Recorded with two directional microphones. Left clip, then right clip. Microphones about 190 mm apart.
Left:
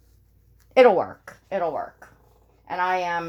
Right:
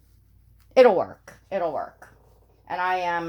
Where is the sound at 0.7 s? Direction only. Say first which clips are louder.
Left 1 dB; 10° left (ahead or behind).